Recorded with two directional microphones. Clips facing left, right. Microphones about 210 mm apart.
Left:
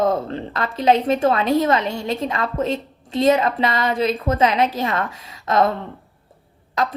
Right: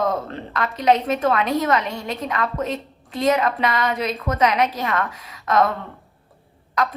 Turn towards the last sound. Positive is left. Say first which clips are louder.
# left 1 dB
turn(degrees=25)  # may be behind; listen again after turning